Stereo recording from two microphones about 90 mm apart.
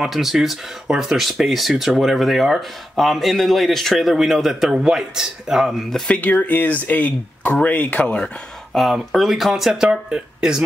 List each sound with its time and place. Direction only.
0.0 s speech: 5° right (ahead or behind)
6.1 s speech: 15° left (ahead or behind)
8.7 s speech: centre (ahead or behind)